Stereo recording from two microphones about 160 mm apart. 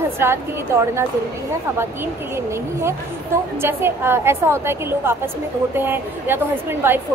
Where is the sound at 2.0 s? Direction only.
15° right (ahead or behind).